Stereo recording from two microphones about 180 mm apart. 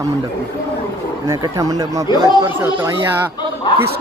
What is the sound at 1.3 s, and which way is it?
Speech, 20° right (ahead or behind).